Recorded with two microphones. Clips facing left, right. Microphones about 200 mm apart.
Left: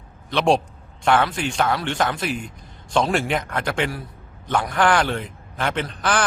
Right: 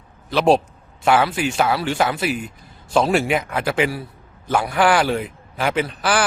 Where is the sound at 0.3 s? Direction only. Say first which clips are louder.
Right 3 dB; 5° right (ahead or behind).